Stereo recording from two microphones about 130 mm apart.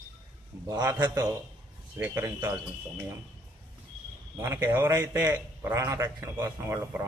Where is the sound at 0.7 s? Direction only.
25° right (ahead or behind).